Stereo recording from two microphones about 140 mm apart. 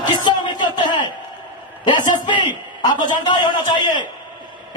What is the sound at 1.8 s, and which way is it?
A man's voice, 30° left (ahead or behind).